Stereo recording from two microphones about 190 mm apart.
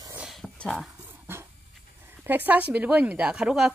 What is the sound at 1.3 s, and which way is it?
Dog, 10° right (ahead or behind).